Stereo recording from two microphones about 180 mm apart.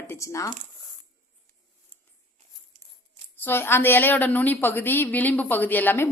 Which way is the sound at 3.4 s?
10° left (ahead or behind).